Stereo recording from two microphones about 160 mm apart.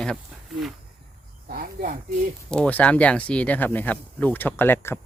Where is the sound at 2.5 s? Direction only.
10° left (ahead or behind).